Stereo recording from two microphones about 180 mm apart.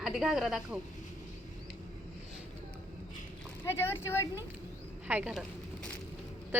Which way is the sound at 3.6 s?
15° left (ahead or behind).